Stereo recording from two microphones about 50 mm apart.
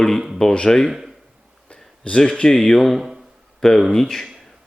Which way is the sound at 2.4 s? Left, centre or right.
Centre.